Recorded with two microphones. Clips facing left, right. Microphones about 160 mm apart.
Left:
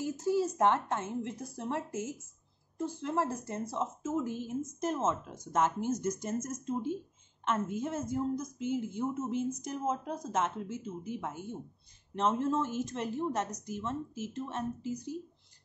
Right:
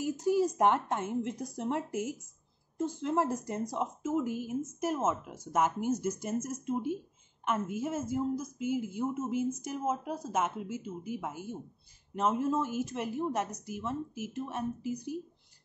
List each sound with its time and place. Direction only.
0.0 s a woman's voice: 15° right (ahead or behind)